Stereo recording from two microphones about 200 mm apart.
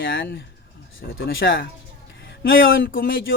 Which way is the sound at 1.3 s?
55° left (ahead or behind).